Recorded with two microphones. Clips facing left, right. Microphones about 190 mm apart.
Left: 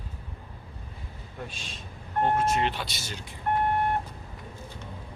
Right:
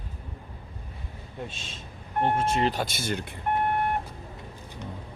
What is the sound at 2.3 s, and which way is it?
Speech, 30° right (ahead or behind).